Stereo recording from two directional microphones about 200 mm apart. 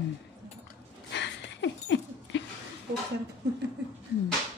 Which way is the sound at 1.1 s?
60° left (ahead or behind).